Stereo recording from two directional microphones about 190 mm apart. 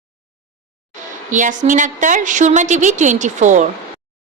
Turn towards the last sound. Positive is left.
turn(degrees=-40)  # may be behind; listen again after turning